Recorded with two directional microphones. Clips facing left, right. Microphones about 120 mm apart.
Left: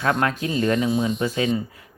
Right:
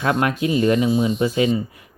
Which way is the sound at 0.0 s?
15° right (ahead or behind).